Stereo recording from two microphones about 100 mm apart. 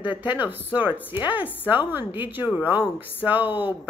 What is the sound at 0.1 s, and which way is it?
A woman's voice, 15° right (ahead or behind).